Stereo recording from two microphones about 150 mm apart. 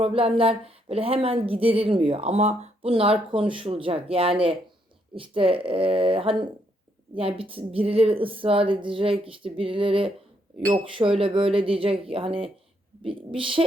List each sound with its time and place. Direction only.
0.0 s speech: 40° right (ahead or behind)